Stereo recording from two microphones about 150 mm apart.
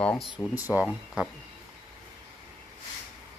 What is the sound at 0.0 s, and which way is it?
Speech, 5° left (ahead or behind).